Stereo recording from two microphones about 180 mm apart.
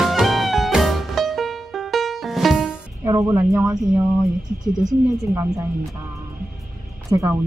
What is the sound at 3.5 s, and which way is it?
Speech, centre (ahead or behind).